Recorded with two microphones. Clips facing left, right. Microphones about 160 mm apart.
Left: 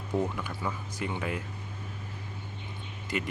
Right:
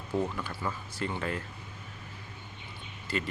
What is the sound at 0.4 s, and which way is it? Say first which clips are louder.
Speech: left 1 dB; 15° left (ahead or behind).